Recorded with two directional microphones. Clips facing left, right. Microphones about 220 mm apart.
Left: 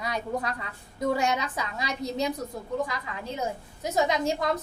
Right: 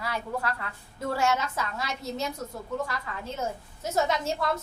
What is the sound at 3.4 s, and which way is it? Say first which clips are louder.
Speech: left 2 dB; 15° left (ahead or behind).